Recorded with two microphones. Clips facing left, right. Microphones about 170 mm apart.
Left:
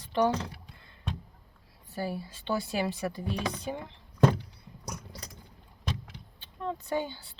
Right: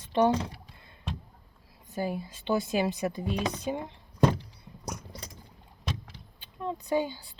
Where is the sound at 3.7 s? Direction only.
15° right (ahead or behind).